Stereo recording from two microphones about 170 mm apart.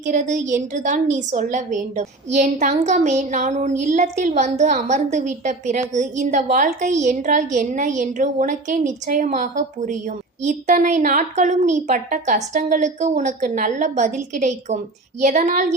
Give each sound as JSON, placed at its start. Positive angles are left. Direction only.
{"t": 0.0, "sound": "a woman's voice", "side_deg": -45}